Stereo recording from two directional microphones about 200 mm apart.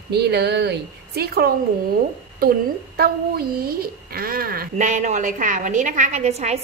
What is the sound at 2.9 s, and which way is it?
A woman's voice, 50° right (ahead or behind).